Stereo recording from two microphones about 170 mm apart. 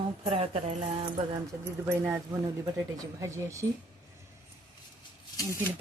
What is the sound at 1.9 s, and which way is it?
Speech, 15° right (ahead or behind).